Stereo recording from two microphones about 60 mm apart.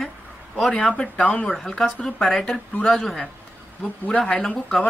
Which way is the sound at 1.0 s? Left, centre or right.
Left.